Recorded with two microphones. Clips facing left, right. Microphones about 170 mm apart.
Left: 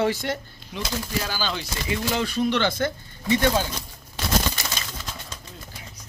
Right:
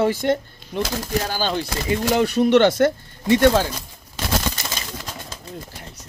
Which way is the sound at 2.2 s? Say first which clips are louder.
Right 10 dB; 65° right (ahead or behind).